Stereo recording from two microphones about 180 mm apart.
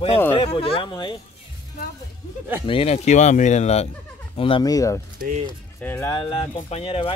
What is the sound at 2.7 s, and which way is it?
A man's voice, 35° left (ahead or behind).